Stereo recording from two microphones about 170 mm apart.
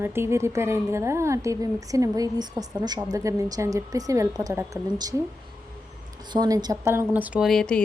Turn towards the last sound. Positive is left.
turn(degrees=5)  # may be behind; listen again after turning